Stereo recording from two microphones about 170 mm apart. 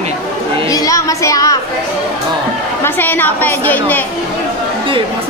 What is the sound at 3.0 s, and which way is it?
A woman's voice, 10° left (ahead or behind).